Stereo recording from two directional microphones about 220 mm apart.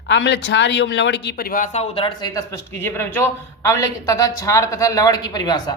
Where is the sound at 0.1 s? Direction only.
55° left (ahead or behind).